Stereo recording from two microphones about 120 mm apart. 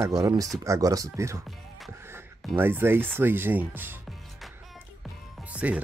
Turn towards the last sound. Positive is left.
turn(degrees=-10)  # may be behind; listen again after turning